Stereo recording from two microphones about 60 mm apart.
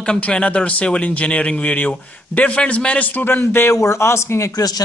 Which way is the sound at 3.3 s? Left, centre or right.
Left.